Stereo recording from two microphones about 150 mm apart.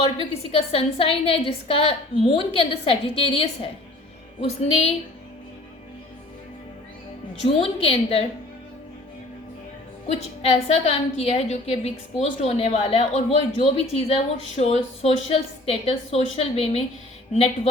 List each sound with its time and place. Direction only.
0.2 s a woman's voice: 40° left (ahead or behind)
7.4 s a woman's voice: 40° left (ahead or behind)
10.7 s a woman's voice: 45° left (ahead or behind)